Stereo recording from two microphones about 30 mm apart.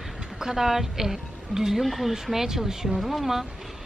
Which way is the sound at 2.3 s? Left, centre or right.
Centre.